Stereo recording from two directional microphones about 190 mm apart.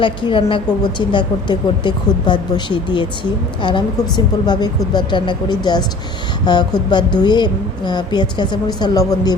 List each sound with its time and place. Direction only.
0.0 s a woman's voice: 25° left (ahead or behind)